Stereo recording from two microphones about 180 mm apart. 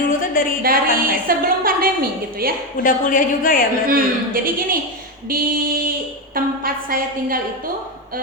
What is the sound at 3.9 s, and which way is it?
A woman's voice, 50° right (ahead or behind).